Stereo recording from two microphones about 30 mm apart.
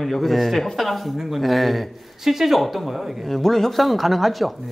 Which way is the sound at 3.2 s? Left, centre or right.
Centre.